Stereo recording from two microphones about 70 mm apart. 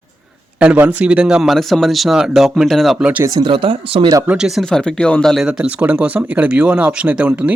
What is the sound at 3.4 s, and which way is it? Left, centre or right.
Speech, right.